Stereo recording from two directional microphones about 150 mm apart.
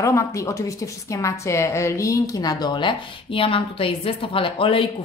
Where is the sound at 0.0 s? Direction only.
20° left (ahead or behind).